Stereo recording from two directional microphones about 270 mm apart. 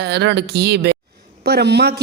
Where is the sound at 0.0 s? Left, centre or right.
Right.